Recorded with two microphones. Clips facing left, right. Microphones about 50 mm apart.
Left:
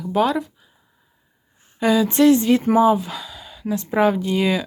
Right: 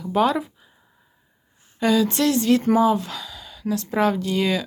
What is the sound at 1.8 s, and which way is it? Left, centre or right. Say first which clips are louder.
Speech: left 1 dB; centre.